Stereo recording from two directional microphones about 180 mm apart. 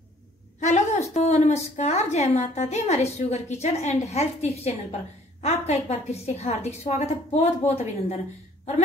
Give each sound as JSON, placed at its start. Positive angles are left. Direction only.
{"t": 0.6, "sound": "a woman's voice", "side_deg": 40}